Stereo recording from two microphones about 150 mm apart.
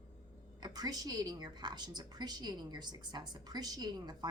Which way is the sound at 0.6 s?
25° right (ahead or behind).